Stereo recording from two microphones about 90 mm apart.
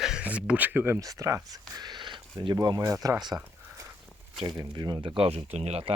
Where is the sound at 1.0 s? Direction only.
40° right (ahead or behind).